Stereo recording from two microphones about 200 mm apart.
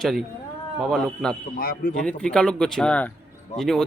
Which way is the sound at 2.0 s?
5° left (ahead or behind).